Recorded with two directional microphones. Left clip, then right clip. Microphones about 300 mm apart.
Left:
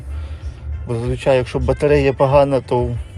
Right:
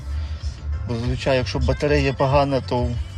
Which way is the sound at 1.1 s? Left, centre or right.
Centre.